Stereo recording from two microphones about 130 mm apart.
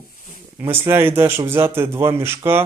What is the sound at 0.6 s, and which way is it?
A man's voice, 20° right (ahead or behind).